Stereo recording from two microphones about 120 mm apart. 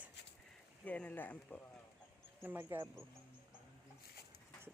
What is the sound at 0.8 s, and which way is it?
Speech, 10° left (ahead or behind).